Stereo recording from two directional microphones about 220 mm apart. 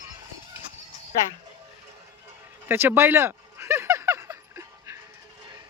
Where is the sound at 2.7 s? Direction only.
10° right (ahead or behind).